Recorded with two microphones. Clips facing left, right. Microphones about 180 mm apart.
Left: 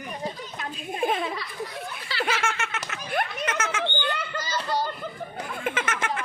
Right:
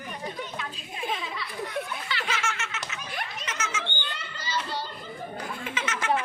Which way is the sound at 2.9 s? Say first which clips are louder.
Left 7 dB; 55° left (ahead or behind).